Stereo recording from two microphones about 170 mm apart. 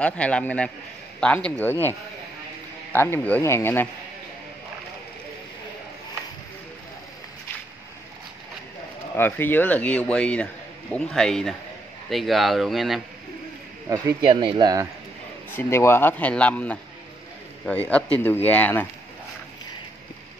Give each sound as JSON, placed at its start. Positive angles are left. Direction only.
{"t": 0.0, "sound": "a man's voice", "side_deg": 5}
{"t": 2.9, "sound": "a man's voice", "side_deg": 10}
{"t": 9.1, "sound": "a man's voice", "side_deg": 10}
{"t": 13.8, "sound": "speech", "side_deg": -25}
{"t": 15.5, "sound": "a man's voice", "side_deg": 15}